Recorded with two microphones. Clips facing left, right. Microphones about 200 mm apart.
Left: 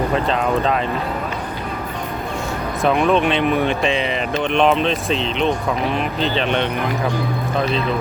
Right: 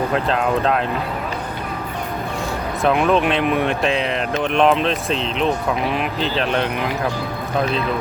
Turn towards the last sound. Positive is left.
turn(degrees=0)  # may be behind; listen again after turning